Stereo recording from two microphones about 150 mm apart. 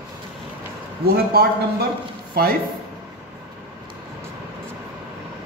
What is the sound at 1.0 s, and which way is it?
Speech, 90° right.